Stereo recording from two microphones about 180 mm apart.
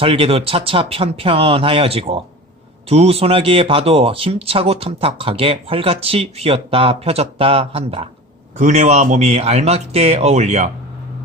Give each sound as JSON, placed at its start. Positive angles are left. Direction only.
{"t": 0.0, "sound": "speech", "side_deg": -30}
{"t": 8.5, "sound": "speech", "side_deg": -45}